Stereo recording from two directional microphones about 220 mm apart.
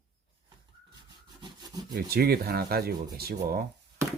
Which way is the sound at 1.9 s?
45° right (ahead or behind).